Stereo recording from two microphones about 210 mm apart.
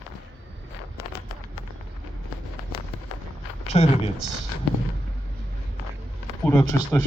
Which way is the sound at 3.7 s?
30° left (ahead or behind).